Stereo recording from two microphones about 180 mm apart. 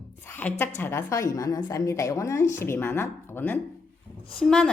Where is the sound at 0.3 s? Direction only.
10° left (ahead or behind).